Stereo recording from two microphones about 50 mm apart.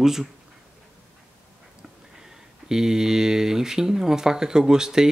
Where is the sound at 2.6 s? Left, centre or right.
Centre.